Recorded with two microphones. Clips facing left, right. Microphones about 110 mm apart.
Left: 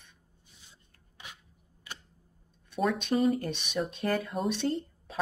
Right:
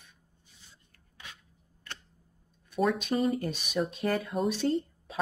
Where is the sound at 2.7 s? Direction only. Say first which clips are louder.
Even; centre (ahead or behind).